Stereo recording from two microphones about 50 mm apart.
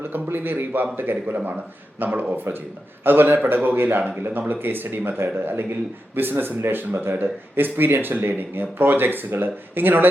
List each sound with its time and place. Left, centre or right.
0.1 s a man's voice: right